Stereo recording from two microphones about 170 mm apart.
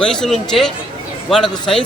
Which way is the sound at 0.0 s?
5° left (ahead or behind).